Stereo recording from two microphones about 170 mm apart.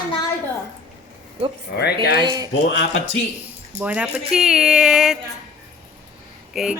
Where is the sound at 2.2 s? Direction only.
25° right (ahead or behind).